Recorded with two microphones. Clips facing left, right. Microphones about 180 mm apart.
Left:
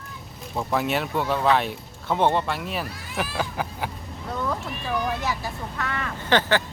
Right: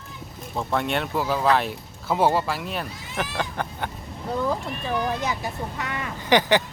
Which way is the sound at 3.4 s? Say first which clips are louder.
Even; 5° left (ahead or behind).